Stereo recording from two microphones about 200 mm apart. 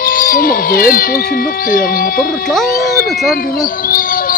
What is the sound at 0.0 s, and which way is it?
Speech, 45° left (ahead or behind).